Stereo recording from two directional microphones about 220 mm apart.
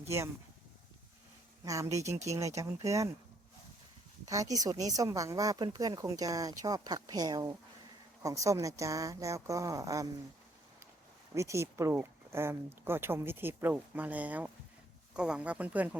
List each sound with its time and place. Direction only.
1.6 s speech: 15° right (ahead or behind)
4.3 s speech: 15° right (ahead or behind)
11.3 s speech: 15° right (ahead or behind)